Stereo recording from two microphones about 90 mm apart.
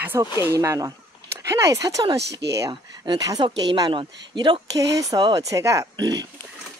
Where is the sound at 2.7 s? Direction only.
55° right (ahead or behind); by 5.8 s 35° right (ahead or behind).